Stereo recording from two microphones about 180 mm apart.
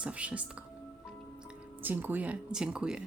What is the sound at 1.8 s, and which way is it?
Speech, 10° right (ahead or behind).